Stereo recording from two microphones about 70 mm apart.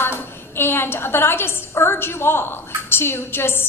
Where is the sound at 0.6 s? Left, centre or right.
Left.